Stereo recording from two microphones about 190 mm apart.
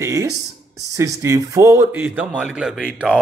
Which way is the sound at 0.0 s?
15° right (ahead or behind).